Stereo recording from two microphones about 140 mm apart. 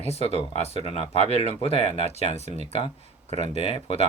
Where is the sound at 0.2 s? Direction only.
45° left (ahead or behind).